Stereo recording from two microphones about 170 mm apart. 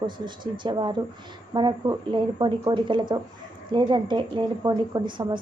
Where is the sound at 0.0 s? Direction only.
25° right (ahead or behind).